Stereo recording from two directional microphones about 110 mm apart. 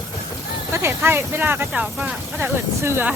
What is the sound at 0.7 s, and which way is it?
Speech, 20° right (ahead or behind).